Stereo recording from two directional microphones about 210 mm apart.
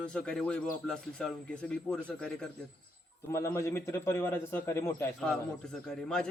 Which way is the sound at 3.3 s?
15° left (ahead or behind).